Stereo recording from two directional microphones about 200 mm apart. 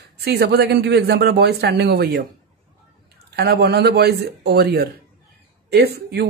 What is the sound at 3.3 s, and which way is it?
A man's voice, 55° right (ahead or behind).